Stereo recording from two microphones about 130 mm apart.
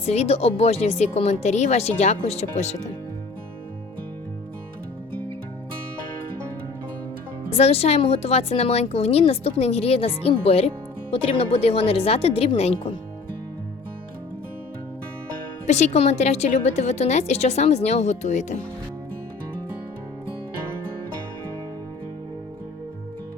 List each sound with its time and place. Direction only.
0.0 s a woman's voice: 55° left (ahead or behind)
7.5 s a woman's voice: 50° left (ahead or behind)
15.6 s a woman's voice: 60° left (ahead or behind)